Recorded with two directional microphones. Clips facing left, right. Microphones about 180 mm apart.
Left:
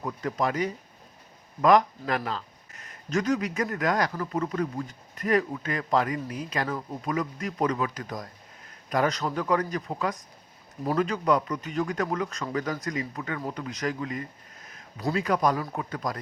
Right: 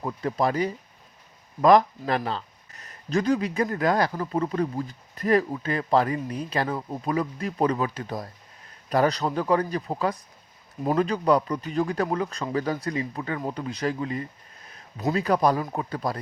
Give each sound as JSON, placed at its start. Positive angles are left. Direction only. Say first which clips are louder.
{"t": 0.0, "sound": "speech", "louder": "right 3 dB", "side_deg": -30}